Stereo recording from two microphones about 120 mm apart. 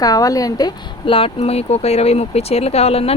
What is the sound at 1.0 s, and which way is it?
A woman's voice, 50° left (ahead or behind).